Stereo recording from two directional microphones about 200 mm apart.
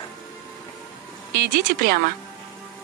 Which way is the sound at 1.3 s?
50° right (ahead or behind).